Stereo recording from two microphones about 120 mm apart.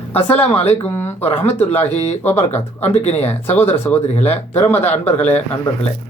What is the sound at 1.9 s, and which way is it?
Speech, 65° left (ahead or behind).